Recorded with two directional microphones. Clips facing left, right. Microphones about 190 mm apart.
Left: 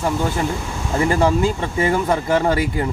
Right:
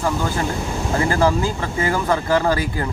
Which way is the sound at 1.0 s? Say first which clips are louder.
Left 3 dB; 20° left (ahead or behind).